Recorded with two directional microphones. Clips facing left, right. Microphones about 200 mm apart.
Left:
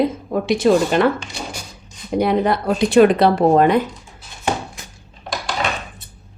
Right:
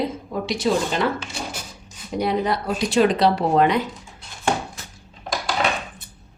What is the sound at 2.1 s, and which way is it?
A woman's voice, 55° left (ahead or behind).